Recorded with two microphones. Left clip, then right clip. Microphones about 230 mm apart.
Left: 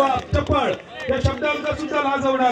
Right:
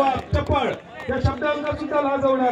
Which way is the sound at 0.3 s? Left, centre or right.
Left.